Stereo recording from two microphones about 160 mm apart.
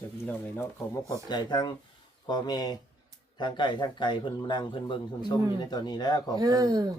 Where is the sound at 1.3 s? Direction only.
30° left (ahead or behind).